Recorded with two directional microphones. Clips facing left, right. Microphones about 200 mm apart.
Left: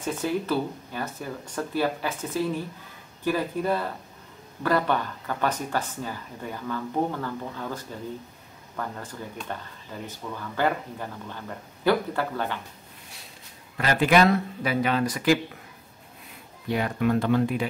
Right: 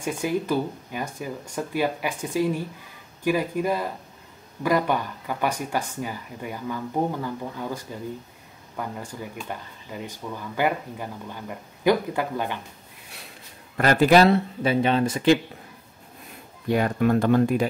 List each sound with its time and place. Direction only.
0.0 s speech: 10° right (ahead or behind)
13.7 s speech: 45° right (ahead or behind); by 15.3 s 25° right (ahead or behind)
16.7 s speech: 45° right (ahead or behind)